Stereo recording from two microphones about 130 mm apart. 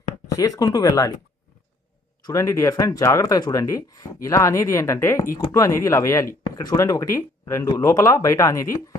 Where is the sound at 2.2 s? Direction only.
25° left (ahead or behind).